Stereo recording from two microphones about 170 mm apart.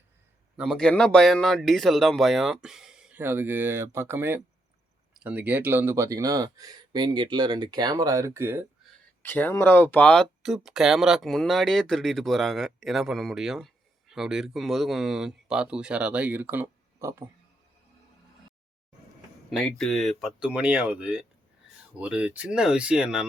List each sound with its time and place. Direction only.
0.5 s speech: centre (ahead or behind)
9.2 s speech: 10° left (ahead or behind); by 17.2 s 15° right (ahead or behind)
19.5 s speech: centre (ahead or behind)